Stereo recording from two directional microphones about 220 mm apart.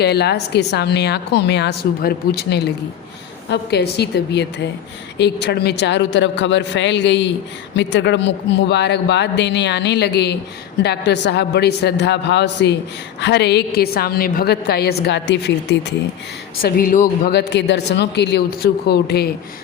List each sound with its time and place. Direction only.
0.0 s speech: 50° left (ahead or behind)
16.6 s speech: 40° left (ahead or behind)